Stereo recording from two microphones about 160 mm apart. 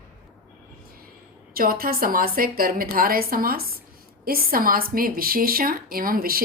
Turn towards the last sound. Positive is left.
turn(degrees=-65)  # may be behind; listen again after turning